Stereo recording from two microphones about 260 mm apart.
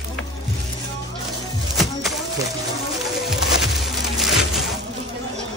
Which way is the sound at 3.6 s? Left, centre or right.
Centre.